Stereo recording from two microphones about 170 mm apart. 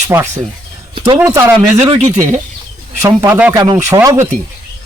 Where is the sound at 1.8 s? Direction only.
30° right (ahead or behind).